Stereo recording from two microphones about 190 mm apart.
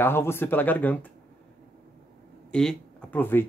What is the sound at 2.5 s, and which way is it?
Speech, 5° left (ahead or behind).